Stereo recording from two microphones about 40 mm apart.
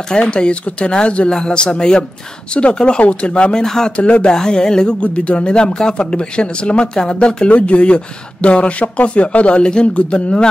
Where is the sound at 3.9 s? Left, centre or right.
Left.